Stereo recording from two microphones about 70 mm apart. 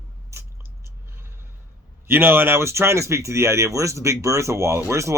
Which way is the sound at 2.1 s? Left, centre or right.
Right.